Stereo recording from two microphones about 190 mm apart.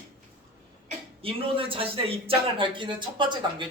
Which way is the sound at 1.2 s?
30° right (ahead or behind).